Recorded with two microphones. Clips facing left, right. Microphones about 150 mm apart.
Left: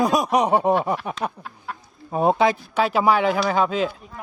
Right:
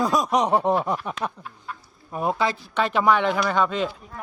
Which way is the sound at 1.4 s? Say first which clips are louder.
Left 3 dB; 80° left.